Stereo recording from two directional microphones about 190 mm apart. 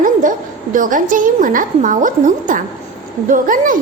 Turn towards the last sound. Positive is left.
turn(degrees=-45)  # may be behind; listen again after turning